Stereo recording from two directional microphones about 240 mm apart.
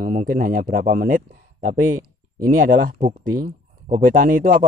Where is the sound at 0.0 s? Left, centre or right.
Right.